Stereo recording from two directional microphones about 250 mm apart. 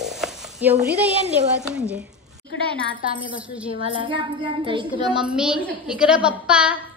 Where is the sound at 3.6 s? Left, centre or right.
Right.